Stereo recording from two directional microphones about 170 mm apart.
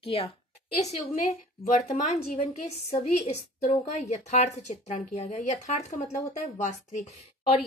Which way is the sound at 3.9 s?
40° left (ahead or behind).